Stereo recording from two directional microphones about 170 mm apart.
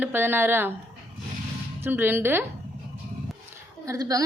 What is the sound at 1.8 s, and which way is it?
Speech, 10° right (ahead or behind).